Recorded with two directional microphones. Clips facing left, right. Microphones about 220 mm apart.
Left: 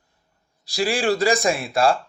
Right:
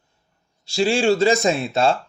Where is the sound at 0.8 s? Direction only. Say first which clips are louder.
Right 3 dB; 25° right (ahead or behind).